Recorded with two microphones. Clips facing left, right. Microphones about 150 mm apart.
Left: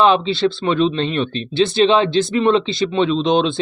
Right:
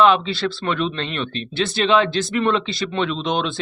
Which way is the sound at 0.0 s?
30° left (ahead or behind).